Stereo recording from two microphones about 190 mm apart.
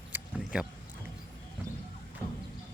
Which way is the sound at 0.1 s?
5° right (ahead or behind).